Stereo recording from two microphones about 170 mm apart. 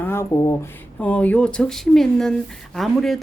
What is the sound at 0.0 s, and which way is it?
Speech, 15° left (ahead or behind).